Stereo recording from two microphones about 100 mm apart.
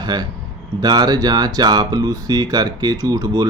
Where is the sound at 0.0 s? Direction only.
40° right (ahead or behind).